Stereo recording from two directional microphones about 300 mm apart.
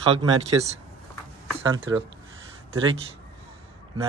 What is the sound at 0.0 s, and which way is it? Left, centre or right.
Speech, centre.